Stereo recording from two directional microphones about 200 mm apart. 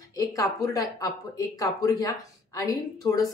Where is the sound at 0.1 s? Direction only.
15° left (ahead or behind).